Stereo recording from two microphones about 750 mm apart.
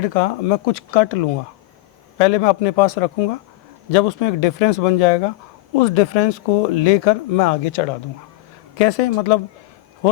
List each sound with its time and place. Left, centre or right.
0.0 s speech: left